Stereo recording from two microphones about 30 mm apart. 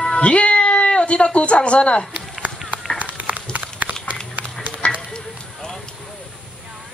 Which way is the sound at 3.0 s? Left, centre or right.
Right.